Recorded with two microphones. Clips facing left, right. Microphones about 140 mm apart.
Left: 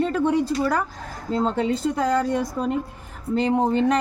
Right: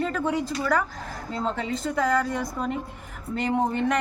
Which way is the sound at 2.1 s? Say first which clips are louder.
Left 3 dB; 30° left (ahead or behind).